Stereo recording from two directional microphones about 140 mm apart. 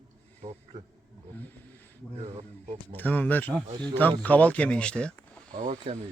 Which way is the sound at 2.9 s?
10° left (ahead or behind).